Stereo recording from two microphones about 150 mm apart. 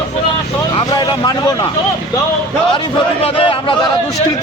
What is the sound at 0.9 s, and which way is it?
Vehicle, 25° left (ahead or behind).